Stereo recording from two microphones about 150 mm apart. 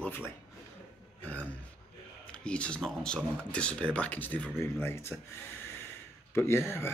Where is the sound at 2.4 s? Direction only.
5° left (ahead or behind).